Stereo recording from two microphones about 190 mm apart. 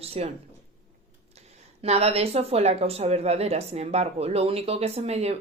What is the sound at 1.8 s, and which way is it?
Speech, 35° right (ahead or behind).